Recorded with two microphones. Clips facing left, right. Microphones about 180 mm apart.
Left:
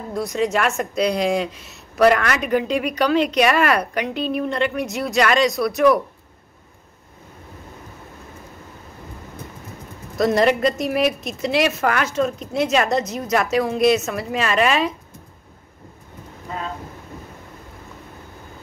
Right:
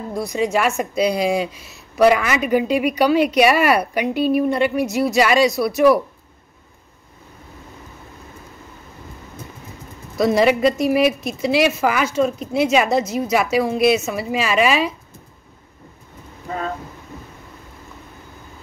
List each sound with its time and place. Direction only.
0.1 s speech: centre (ahead or behind)
10.1 s speech: 5° right (ahead or behind)